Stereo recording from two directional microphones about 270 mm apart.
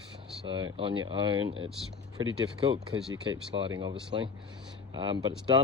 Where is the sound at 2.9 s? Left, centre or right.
Right.